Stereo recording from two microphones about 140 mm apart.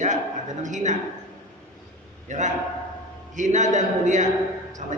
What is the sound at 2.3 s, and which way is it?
A man's voice, 60° right (ahead or behind).